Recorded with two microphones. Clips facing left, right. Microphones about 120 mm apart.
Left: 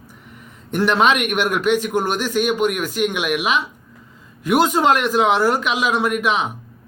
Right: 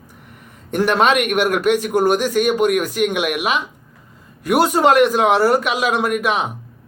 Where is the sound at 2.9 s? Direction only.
50° right (ahead or behind).